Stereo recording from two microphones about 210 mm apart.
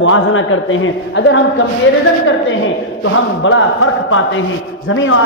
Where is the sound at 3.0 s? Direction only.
70° left (ahead or behind).